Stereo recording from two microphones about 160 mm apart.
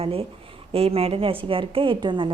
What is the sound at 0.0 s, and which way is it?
A woman's voice, 35° right (ahead or behind).